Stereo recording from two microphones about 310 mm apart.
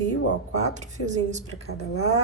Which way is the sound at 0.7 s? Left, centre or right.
Right.